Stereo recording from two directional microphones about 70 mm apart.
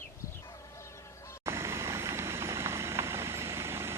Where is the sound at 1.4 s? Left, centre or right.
Right.